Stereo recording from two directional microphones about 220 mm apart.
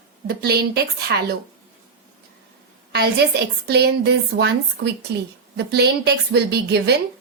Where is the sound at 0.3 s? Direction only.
45° right (ahead or behind).